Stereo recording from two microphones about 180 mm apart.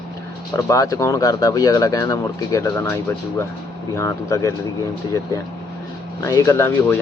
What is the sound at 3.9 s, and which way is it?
Speech, 15° left (ahead or behind).